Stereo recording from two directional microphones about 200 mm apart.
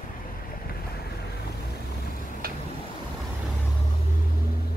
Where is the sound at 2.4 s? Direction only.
45° right (ahead or behind).